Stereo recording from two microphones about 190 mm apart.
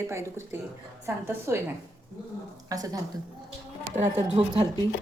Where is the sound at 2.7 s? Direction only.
20° right (ahead or behind).